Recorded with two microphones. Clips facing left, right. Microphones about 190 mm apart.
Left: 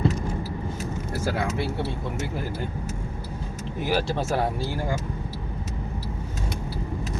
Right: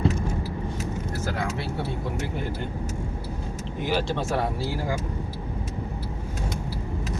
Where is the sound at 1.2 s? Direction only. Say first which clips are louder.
Left 4 dB; 5° left (ahead or behind).